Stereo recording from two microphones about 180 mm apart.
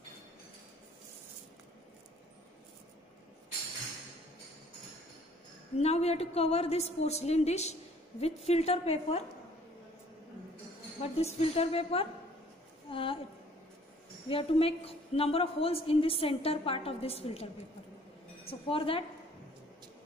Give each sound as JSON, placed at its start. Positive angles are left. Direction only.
{"t": 5.8, "sound": "a woman's voice", "side_deg": 35}
{"t": 11.0, "sound": "a woman's voice", "side_deg": 35}
{"t": 14.3, "sound": "a woman's voice", "side_deg": 30}
{"t": 18.5, "sound": "a woman's voice", "side_deg": 30}